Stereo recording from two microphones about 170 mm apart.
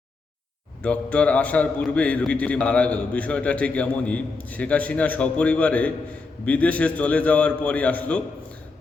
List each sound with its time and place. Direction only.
0.8 s a man's voice: 10° left (ahead or behind)